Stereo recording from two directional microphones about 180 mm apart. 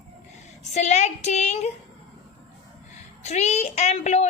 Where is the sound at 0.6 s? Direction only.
40° left (ahead or behind).